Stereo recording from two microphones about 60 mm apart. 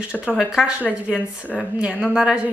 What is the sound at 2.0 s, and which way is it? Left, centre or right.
Speech, centre.